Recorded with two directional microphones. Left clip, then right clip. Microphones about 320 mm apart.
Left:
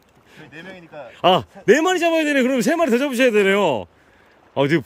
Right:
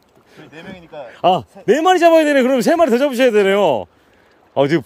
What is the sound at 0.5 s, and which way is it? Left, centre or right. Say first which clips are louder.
Speech: right 3 dB; right.